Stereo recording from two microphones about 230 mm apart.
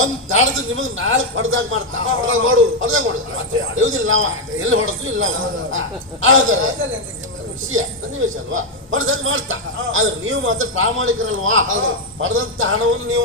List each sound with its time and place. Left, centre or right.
0.0 s a man's voice: right
8.5 s a man's voice: right